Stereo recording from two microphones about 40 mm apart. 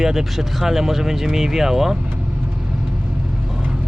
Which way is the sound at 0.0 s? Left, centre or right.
Centre.